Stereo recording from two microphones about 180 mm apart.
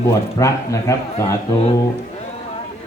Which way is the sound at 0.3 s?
20° left (ahead or behind).